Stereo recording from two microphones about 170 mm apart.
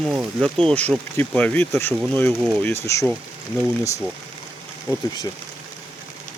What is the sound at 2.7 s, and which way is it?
Speech, 15° left (ahead or behind).